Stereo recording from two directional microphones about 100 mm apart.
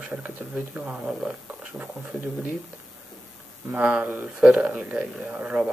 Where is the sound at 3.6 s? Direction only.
15° right (ahead or behind).